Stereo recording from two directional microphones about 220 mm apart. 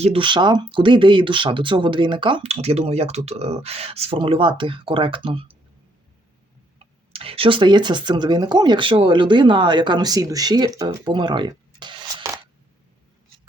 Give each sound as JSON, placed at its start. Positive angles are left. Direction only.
{"t": 0.0, "sound": "speech", "side_deg": -25}
{"t": 6.7, "sound": "speech", "side_deg": -25}